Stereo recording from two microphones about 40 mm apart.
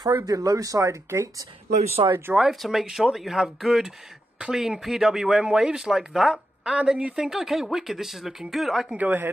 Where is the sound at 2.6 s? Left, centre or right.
Centre.